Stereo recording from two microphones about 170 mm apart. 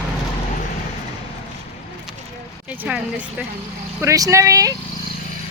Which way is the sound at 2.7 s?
5° right (ahead or behind).